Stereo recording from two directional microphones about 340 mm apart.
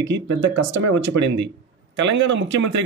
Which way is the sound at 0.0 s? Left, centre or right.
Right.